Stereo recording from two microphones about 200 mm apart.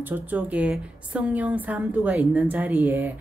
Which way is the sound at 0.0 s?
10° right (ahead or behind).